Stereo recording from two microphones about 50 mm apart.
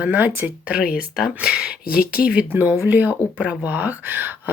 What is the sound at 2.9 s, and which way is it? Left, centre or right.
Speech, right.